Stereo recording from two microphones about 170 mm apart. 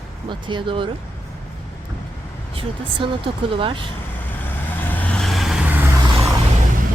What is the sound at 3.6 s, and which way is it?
Speech, 30° right (ahead or behind).